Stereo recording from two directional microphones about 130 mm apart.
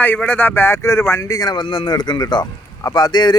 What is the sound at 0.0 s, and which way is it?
Speech, 10° left (ahead or behind).